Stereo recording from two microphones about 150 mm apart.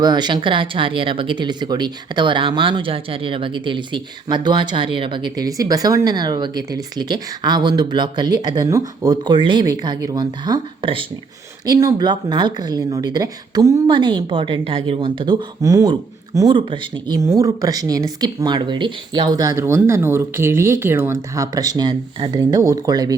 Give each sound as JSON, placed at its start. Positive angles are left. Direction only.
{"t": 0.0, "sound": "speech", "side_deg": -30}
{"t": 11.6, "sound": "speech", "side_deg": -25}
{"t": 15.6, "sound": "speech", "side_deg": -20}